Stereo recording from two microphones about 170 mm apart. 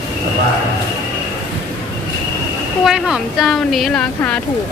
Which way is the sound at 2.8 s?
5° right (ahead or behind).